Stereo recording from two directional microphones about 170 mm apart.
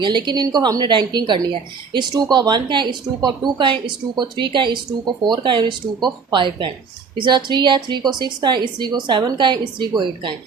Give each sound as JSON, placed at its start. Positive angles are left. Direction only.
{"t": 0.0, "sound": "speech", "side_deg": -25}